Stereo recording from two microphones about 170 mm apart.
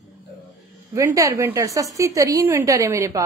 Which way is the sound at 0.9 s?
15° right (ahead or behind).